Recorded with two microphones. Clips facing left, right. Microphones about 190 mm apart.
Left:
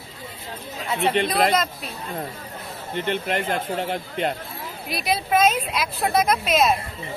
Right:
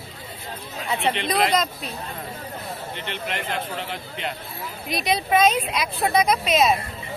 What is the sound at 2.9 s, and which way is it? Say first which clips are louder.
Speech: left 9 dB; 50° left (ahead or behind).